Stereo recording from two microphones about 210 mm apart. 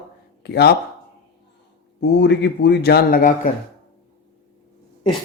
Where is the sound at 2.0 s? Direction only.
55° left (ahead or behind).